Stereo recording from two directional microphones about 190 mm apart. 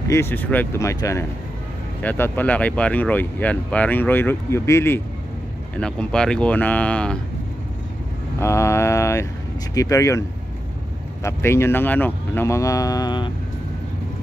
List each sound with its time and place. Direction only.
0.1 s speech: 10° left (ahead or behind)
8.4 s mantra: 15° left (ahead or behind)
9.8 s speech: 15° left (ahead or behind)
11.2 s speech: 15° left (ahead or behind)